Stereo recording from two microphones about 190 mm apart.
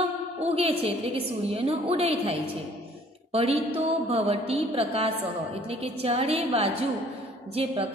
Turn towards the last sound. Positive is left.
turn(degrees=-30)  # may be behind; listen again after turning